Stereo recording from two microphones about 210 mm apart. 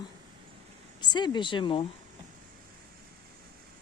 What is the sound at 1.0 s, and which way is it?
Speech, 20° left (ahead or behind).